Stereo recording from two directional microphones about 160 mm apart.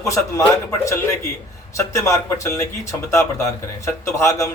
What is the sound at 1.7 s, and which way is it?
Speech, 20° left (ahead or behind).